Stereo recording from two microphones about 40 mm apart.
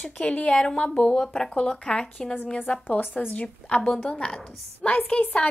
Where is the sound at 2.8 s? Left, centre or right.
Left.